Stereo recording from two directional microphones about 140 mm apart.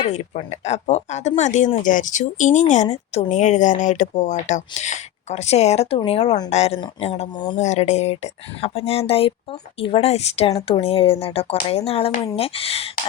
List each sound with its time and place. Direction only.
0.1 s speech: 55° left (ahead or behind)